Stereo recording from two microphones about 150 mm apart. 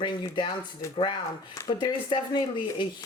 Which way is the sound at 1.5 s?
25° left (ahead or behind).